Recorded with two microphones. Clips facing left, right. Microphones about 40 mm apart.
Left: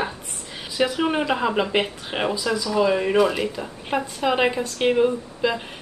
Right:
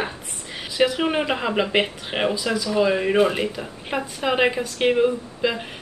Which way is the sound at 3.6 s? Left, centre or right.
Centre.